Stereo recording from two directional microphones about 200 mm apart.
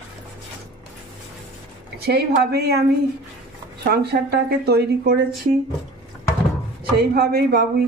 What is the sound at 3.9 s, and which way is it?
Speech, 55° right (ahead or behind).